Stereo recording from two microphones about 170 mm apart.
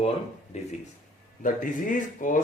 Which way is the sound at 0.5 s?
40° left (ahead or behind).